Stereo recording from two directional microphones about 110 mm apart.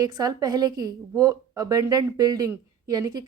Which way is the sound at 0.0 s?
35° right (ahead or behind).